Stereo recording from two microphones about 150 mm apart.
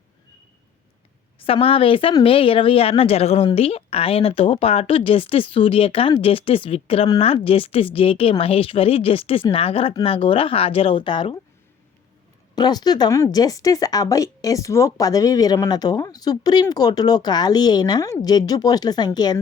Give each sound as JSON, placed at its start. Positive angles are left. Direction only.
{"t": 1.5, "sound": "a woman's voice", "side_deg": 40}
{"t": 12.5, "sound": "speech", "side_deg": 25}